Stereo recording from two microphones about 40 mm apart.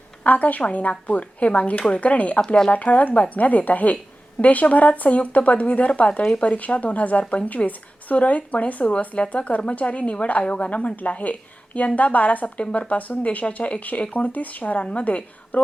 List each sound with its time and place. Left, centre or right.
0.3 s a woman's voice: left
6.6 s a woman's voice: left